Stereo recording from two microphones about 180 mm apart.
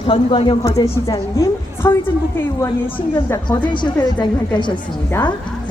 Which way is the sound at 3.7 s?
25° left (ahead or behind).